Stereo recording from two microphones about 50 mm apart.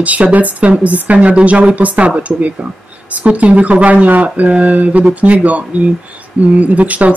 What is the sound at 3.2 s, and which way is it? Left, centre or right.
Speech, right.